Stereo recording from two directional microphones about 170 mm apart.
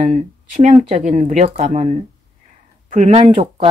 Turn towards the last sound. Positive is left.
turn(degrees=-35)  # may be behind; listen again after turning